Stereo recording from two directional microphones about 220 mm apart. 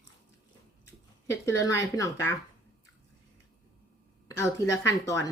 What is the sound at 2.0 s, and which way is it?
Speech, 15° left (ahead or behind).